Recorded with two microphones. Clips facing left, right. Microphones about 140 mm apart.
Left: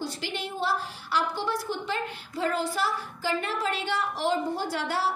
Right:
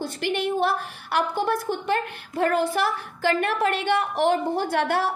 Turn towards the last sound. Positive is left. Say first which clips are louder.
# right 6 dB
turn(degrees=-60)  # may be behind; listen again after turning